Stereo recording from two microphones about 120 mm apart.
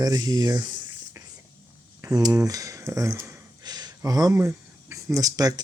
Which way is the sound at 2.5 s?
30° right (ahead or behind).